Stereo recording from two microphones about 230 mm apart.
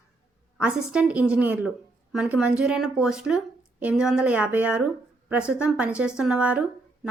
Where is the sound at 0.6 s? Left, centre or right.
Centre.